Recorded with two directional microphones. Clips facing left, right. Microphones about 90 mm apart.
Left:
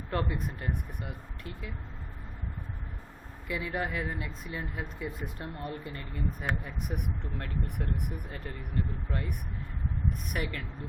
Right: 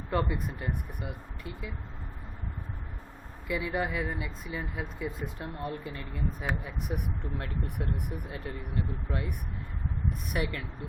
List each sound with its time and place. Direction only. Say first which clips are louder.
0.1 s speech: right 2 dB; 5° right (ahead or behind)
3.4 s speech: right 2 dB; centre (ahead or behind)